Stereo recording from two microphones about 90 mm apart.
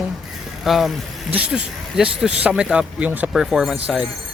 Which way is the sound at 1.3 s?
10° right (ahead or behind).